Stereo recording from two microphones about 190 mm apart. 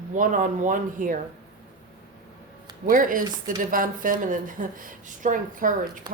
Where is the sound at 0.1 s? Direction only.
45° right (ahead or behind).